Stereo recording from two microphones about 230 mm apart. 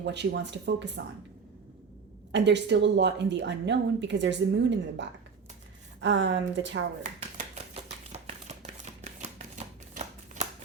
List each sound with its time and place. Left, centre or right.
0.0 s a woman's voice: right
2.3 s a woman's voice: right
7.0 s a sound: right
9.9 s shuffling cards: right